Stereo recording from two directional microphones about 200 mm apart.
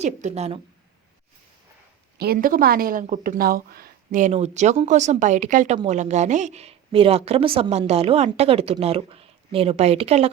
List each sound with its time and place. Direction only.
0.0 s a woman's voice: 35° right (ahead or behind)
2.1 s a woman's voice: 50° right (ahead or behind); by 10.2 s 30° right (ahead or behind)